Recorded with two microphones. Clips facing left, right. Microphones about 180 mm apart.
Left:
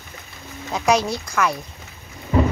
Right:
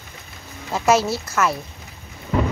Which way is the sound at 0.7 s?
5° right (ahead or behind).